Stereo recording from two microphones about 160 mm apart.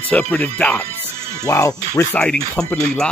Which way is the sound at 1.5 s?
20° left (ahead or behind).